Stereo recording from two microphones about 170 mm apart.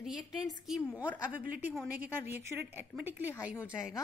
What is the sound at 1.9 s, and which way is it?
A woman's voice, 10° right (ahead or behind).